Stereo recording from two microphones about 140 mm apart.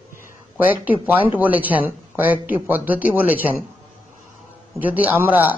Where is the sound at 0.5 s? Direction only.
10° right (ahead or behind).